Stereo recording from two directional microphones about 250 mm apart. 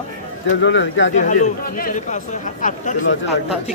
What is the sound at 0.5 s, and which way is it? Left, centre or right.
Speech, left.